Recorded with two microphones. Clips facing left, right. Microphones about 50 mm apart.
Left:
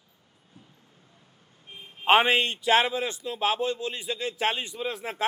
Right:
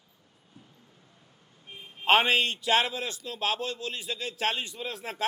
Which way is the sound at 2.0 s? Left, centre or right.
Centre.